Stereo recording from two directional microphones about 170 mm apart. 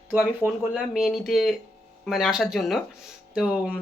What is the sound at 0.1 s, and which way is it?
Speech, 10° right (ahead or behind).